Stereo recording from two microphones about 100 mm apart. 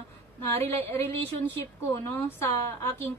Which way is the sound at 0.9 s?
20° left (ahead or behind).